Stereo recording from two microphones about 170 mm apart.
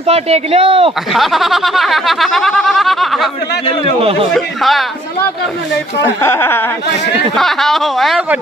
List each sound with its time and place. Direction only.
0.0 s speech: 40° right (ahead or behind)
1.1 s speech: centre (ahead or behind)
4.3 s speech: centre (ahead or behind)
6.0 s speech: 15° left (ahead or behind)
7.3 s speech: centre (ahead or behind)